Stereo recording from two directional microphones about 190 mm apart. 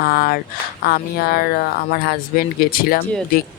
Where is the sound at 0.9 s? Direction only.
50° left (ahead or behind).